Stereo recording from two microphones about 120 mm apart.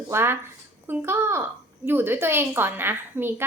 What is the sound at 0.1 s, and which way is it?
A woman's voice, 20° right (ahead or behind).